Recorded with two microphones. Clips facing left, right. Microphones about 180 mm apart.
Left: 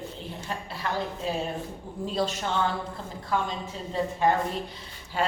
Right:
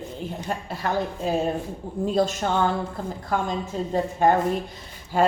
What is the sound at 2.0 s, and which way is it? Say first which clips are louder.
A woman's voice: right 6 dB; 45° right (ahead or behind).